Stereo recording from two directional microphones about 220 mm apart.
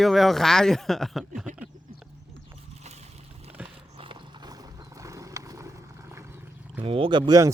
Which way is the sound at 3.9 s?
25° right (ahead or behind).